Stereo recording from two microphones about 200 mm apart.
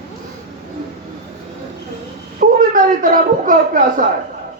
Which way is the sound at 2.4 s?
45° right (ahead or behind).